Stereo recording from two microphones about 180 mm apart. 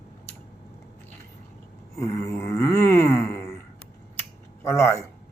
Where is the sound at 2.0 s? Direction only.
15° left (ahead or behind).